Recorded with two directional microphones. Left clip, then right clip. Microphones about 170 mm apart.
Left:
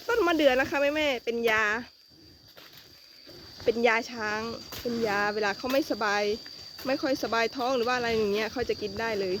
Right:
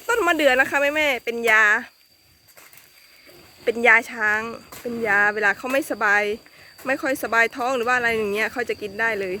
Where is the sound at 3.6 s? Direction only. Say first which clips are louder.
Right 8 dB; 5° right (ahead or behind).